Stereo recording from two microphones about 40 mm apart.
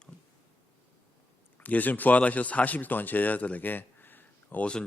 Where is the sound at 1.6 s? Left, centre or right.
Left.